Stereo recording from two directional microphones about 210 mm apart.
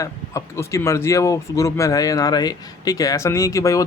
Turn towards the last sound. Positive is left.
turn(degrees=15)  # may be behind; listen again after turning